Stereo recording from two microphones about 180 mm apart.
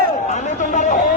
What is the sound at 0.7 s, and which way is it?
Chatter, 40° left (ahead or behind).